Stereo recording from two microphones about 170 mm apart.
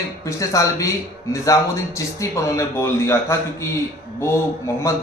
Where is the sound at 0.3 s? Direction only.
20° left (ahead or behind).